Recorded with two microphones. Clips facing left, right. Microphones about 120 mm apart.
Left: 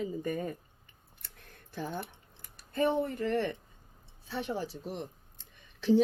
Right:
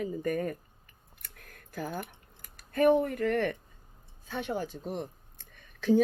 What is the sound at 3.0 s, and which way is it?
Speech, 25° left (ahead or behind).